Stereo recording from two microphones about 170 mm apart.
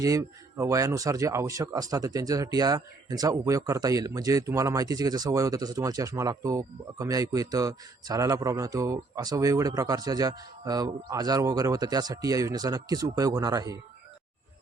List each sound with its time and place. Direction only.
0.0 s speech: 20° right (ahead or behind)